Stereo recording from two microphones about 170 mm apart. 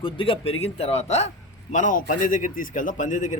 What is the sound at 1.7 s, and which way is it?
A man's voice, 50° left (ahead or behind).